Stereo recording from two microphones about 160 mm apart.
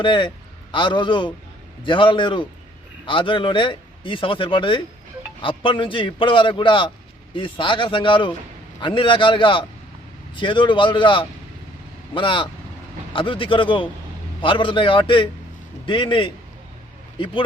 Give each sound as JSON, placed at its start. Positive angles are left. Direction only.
{"t": 0.0, "sound": "speech", "side_deg": 30}